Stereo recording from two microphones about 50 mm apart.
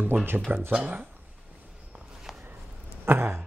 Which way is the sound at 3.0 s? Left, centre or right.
Right.